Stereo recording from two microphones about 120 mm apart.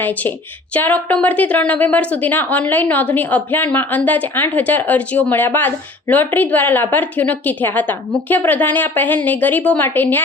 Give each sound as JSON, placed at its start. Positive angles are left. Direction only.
{"t": 0.0, "sound": "speech", "side_deg": 15}